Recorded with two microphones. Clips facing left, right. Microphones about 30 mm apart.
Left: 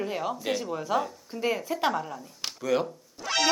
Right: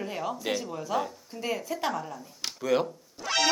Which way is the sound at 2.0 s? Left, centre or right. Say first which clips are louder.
Left 1 dB; centre.